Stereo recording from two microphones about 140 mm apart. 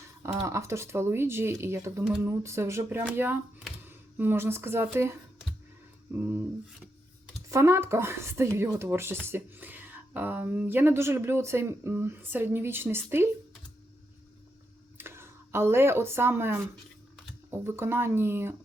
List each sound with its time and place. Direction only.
0.2 s speech: 20° right (ahead or behind)
6.1 s a woman's voice: 15° right (ahead or behind)
7.5 s a woman's voice: 20° right (ahead or behind)
14.9 s a woman's voice: 15° right (ahead or behind)